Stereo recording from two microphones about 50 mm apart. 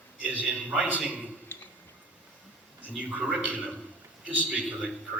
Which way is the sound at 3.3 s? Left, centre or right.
Right.